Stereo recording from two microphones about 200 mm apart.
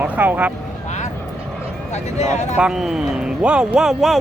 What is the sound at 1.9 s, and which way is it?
Speech, 35° left (ahead or behind).